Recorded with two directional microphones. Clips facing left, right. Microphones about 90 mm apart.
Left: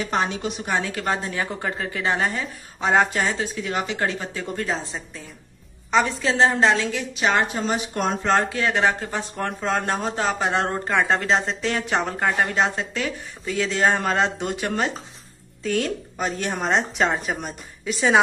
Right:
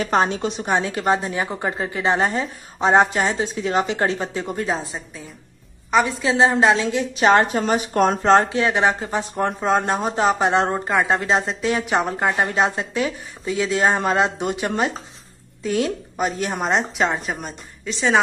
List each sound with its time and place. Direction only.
0.0 s a woman's voice: 40° right (ahead or behind); by 4.7 s 20° right (ahead or behind)
5.9 s a woman's voice: 5° right (ahead or behind); by 7.1 s 20° right (ahead or behind)
7.2 s a woman's voice: 45° right (ahead or behind); by 10.8 s 20° right (ahead or behind)
10.9 s a woman's voice: 10° right (ahead or behind)